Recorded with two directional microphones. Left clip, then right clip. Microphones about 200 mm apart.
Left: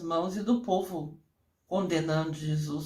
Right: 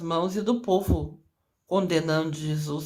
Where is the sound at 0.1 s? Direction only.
35° right (ahead or behind).